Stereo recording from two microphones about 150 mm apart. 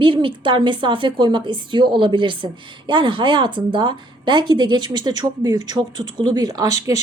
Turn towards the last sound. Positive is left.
turn(degrees=-25)  # may be behind; listen again after turning